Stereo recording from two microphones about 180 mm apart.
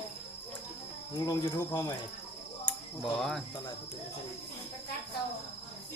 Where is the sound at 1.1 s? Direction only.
20° left (ahead or behind).